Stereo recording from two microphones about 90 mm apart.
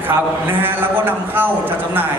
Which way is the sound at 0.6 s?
20° right (ahead or behind).